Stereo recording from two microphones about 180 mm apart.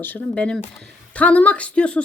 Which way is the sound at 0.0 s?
5° left (ahead or behind).